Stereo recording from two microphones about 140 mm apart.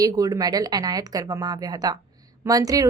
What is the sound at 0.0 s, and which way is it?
A woman's voice, 25° right (ahead or behind).